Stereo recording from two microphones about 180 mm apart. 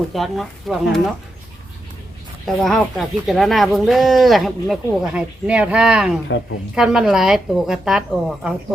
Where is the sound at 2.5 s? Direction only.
Centre (ahead or behind).